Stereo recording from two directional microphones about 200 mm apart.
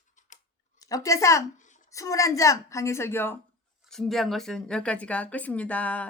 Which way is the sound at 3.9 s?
Centre (ahead or behind).